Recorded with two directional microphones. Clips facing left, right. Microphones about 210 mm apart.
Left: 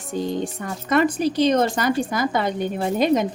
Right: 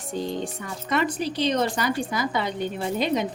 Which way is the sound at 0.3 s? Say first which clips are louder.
Left 4 dB; 45° left (ahead or behind).